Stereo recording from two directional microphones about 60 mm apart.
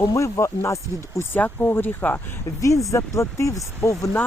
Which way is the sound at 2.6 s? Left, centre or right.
Left.